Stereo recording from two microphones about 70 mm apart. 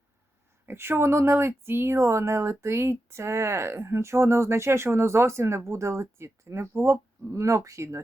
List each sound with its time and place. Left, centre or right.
0.6 s speech: right